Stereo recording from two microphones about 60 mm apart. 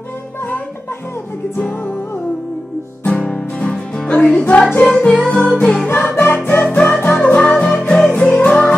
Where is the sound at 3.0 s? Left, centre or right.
Centre.